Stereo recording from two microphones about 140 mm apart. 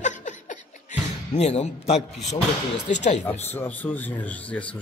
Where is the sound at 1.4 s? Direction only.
50° left (ahead or behind).